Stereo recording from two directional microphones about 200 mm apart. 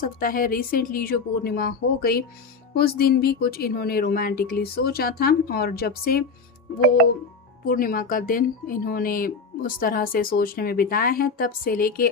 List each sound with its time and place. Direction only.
0.0 s speech: 45° left (ahead or behind)
7.6 s speech: 45° left (ahead or behind)